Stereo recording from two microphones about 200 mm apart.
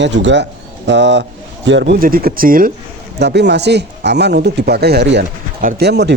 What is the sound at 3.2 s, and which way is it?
Speech, 60° right (ahead or behind).